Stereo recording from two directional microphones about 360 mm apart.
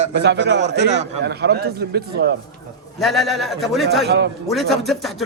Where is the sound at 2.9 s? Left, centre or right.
Centre.